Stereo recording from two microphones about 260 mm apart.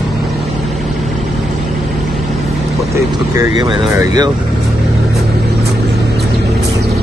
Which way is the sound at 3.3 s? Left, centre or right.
Centre.